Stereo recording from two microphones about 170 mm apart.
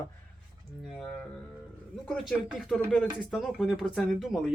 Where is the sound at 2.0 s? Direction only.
Centre (ahead or behind).